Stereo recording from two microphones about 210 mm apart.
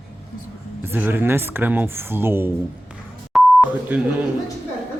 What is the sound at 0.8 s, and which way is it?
Speech, 10° right (ahead or behind).